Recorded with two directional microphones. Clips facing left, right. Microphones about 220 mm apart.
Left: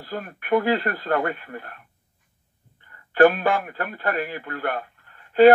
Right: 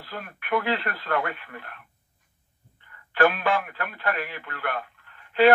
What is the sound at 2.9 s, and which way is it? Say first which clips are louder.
A man's voice: left 6 dB; 40° left (ahead or behind).